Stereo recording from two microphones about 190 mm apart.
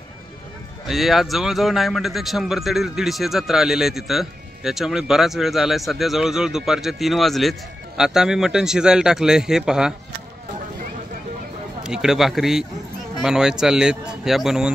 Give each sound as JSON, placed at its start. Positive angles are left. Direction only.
{"t": 0.8, "sound": "speech", "side_deg": 0}
{"t": 11.8, "sound": "speech", "side_deg": -5}